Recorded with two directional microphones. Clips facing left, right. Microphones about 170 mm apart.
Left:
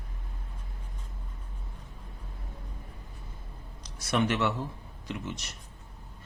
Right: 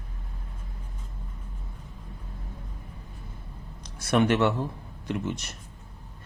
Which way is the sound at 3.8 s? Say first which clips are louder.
Right 5 dB; 55° right (ahead or behind).